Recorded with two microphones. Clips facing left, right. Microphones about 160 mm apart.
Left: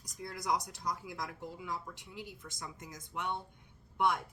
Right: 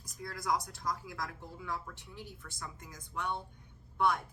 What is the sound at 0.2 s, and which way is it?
A woman's voice, 20° left (ahead or behind).